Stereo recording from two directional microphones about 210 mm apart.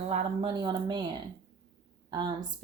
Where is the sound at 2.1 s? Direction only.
20° right (ahead or behind).